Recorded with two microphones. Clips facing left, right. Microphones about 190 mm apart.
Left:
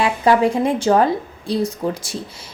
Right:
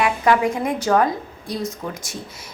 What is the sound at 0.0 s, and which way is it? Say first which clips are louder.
A woman's voice: left 3 dB; 30° left (ahead or behind).